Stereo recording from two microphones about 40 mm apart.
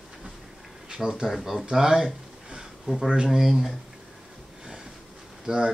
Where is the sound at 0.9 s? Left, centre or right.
Centre.